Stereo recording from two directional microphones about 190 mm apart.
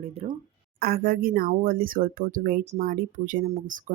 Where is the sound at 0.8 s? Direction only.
50° right (ahead or behind).